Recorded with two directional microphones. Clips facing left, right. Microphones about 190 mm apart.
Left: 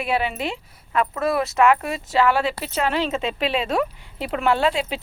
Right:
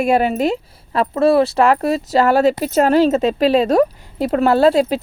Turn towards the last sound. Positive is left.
turn(degrees=-40)  # may be behind; listen again after turning